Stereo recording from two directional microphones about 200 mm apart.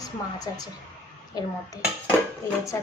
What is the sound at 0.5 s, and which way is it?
Speech, 15° left (ahead or behind).